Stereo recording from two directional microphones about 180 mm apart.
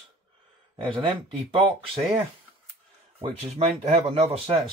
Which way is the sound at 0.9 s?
30° right (ahead or behind).